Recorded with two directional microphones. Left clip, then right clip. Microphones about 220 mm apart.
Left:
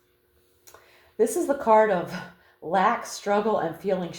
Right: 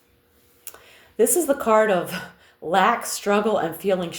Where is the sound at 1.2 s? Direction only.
35° right (ahead or behind).